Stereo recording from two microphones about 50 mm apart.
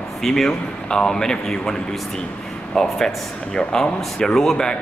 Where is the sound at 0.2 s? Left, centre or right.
Centre.